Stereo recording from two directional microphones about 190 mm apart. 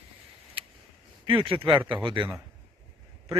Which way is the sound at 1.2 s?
25° right (ahead or behind).